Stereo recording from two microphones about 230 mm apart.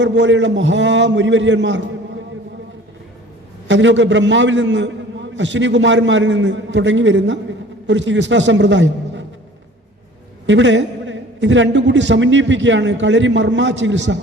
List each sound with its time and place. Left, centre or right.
0.0 s a man's voice: right
3.7 s a man's voice: right
10.4 s a man's voice: right